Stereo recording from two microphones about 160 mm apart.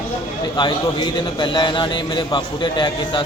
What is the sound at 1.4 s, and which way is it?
Speech, 30° left (ahead or behind).